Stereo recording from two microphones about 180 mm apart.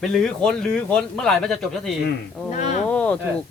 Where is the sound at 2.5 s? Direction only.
40° left (ahead or behind).